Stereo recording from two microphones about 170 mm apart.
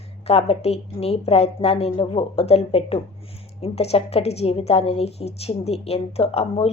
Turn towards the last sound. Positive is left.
turn(degrees=35)  # may be behind; listen again after turning